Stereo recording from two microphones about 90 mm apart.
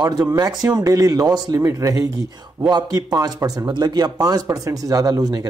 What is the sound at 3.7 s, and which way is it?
Speech, 50° right (ahead or behind).